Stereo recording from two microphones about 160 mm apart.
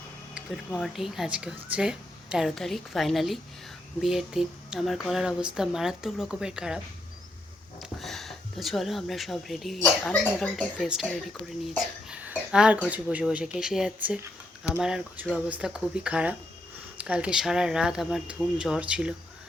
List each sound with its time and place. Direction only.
0.3 s speech: centre (ahead or behind)
7.8 s speech: centre (ahead or behind)
10.8 s speech: 5° right (ahead or behind)
12.0 s a sound: 10° right (ahead or behind)
12.9 s speech: 10° right (ahead or behind)